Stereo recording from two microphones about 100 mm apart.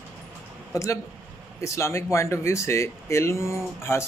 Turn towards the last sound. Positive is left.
turn(degrees=25)  # may be behind; listen again after turning